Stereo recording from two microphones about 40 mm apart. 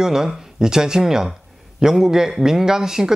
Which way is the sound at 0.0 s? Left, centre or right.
Centre.